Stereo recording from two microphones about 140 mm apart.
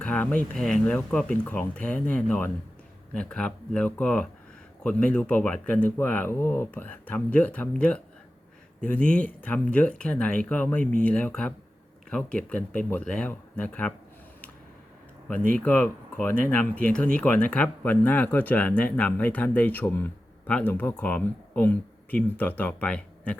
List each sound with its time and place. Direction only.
0.0 s speech: 10° left (ahead or behind)
15.3 s speech: 10° left (ahead or behind)